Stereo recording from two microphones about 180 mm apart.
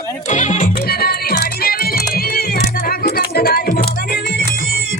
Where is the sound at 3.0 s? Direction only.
60° left (ahead or behind).